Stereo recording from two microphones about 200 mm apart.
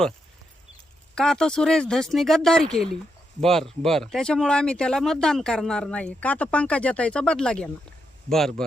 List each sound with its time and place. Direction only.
1.1 s speech: 5° left (ahead or behind)